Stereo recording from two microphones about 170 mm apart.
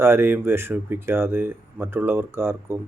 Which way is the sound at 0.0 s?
15° right (ahead or behind).